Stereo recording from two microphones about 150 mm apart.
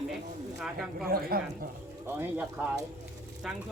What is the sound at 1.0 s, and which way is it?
Speech, 80° right.